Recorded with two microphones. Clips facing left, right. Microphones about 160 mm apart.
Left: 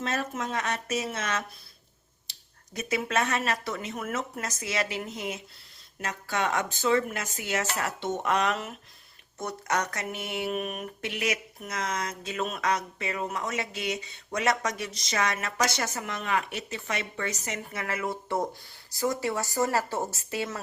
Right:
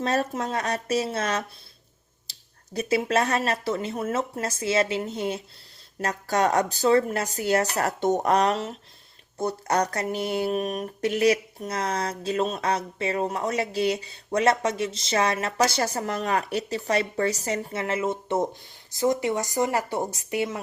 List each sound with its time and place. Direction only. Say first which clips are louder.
0.0 s speech: right 6 dB; 35° right (ahead or behind)
2.7 s speech: right 5 dB; 30° right (ahead or behind)